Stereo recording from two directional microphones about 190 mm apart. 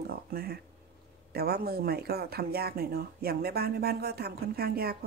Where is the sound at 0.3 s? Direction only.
55° right (ahead or behind).